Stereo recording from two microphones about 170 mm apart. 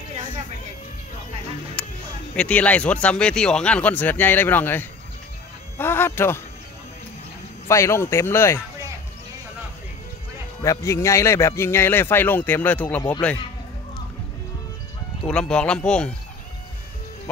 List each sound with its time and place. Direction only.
1.8 s music: 5° left (ahead or behind)
2.3 s speech: 5° left (ahead or behind)
7.6 s speech: 15° left (ahead or behind)
10.6 s speech: 20° left (ahead or behind)
15.2 s speech: 5° left (ahead or behind)